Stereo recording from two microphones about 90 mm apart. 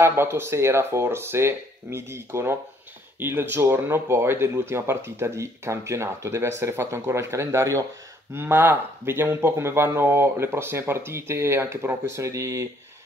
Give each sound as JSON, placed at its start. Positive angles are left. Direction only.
{"t": 0.0, "sound": "speech", "side_deg": -25}